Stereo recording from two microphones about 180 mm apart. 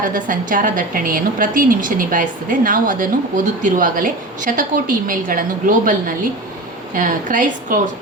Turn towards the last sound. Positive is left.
turn(degrees=-45)  # may be behind; listen again after turning